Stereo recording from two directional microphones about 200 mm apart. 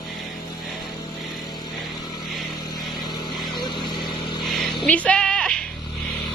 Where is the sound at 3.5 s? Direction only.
20° left (ahead or behind).